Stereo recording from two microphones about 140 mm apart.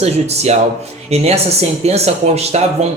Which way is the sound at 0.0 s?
50° right (ahead or behind).